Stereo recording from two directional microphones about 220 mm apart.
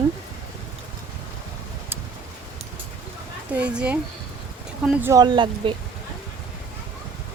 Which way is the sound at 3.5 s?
5° right (ahead or behind).